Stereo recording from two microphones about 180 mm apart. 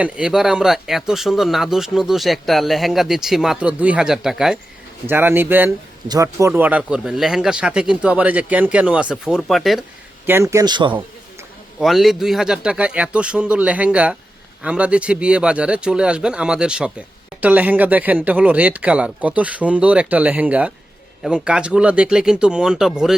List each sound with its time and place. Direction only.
0.0 s speech: 5° right (ahead or behind)
10.2 s speech: 15° right (ahead or behind)
11.8 s speech: centre (ahead or behind)